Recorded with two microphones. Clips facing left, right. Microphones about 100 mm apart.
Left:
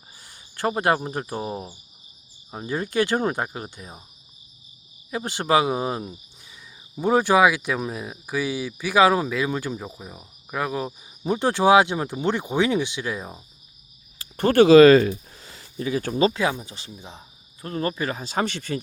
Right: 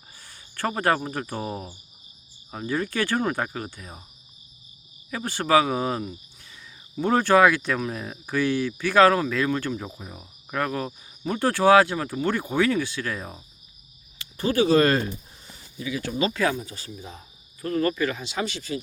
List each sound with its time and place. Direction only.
0.2 s speech: 20° left (ahead or behind)
5.1 s speech: 20° left (ahead or behind)
14.3 s speech: 65° left (ahead or behind); by 15.6 s 90° left
15.8 s speech: 45° left (ahead or behind)
16.4 s speech: 15° left (ahead or behind); by 18.8 s 60° left (ahead or behind)